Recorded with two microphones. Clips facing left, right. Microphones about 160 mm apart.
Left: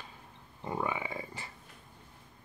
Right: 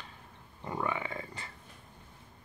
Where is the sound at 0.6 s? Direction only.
20° left (ahead or behind).